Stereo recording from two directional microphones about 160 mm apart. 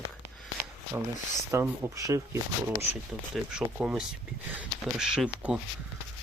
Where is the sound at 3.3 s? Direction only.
5° right (ahead or behind).